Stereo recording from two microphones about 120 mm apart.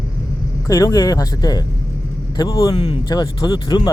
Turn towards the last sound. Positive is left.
turn(degrees=35)  # may be behind; listen again after turning